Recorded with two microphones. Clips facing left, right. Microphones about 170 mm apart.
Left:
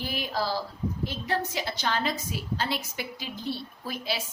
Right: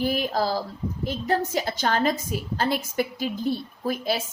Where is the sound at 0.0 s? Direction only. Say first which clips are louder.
Right 7 dB; 45° right (ahead or behind).